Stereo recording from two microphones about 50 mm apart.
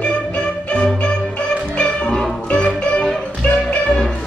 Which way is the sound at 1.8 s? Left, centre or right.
Centre.